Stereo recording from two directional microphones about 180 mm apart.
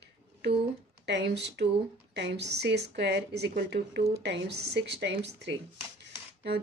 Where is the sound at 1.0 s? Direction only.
75° right (ahead or behind).